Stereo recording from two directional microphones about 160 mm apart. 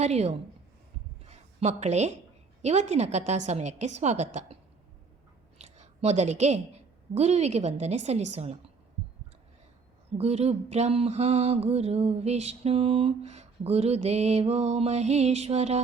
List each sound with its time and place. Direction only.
0.0 s mantra: 40° right (ahead or behind)
1.2 s a sound: 40° right (ahead or behind)
2.6 s a woman's voice: 45° right (ahead or behind)
5.5 s a sound: 45° right (ahead or behind)
7.1 s a woman's voice: 40° right (ahead or behind)
10.1 s mantra: 40° right (ahead or behind)